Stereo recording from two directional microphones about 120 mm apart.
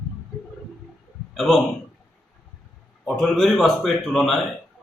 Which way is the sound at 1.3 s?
Centre (ahead or behind).